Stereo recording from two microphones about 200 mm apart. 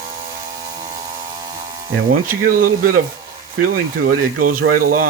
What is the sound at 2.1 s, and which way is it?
Speech, 45° right (ahead or behind).